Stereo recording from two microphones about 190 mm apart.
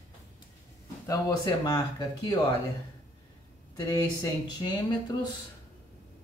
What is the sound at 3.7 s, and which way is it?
Speech, 20° left (ahead or behind).